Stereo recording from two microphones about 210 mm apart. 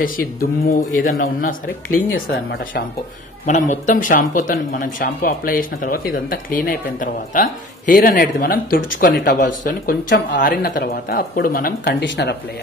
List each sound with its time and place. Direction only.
0.0 s speech: 45° left (ahead or behind)
3.4 s speech: 35° left (ahead or behind); by 12.4 s 50° left (ahead or behind)